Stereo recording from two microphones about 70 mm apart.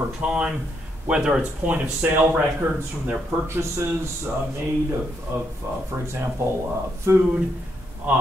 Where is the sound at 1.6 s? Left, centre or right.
Right.